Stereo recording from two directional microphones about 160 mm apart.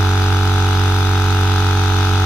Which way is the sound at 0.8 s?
15° left (ahead or behind).